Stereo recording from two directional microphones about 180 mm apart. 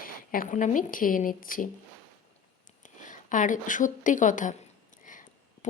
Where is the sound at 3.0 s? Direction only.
45° left (ahead or behind).